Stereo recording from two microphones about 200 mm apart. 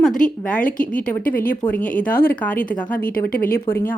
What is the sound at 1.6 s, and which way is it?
Speech, 10° left (ahead or behind).